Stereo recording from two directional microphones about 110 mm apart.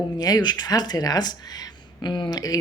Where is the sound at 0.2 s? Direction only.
35° left (ahead or behind).